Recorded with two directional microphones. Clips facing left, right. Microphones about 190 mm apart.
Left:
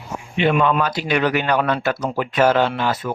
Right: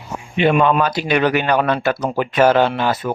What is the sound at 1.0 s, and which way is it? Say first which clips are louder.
Speech: right 2 dB; 65° right (ahead or behind).